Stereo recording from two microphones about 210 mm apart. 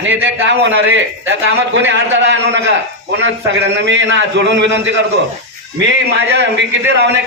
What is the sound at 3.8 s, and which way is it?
A man's voice, 60° right (ahead or behind).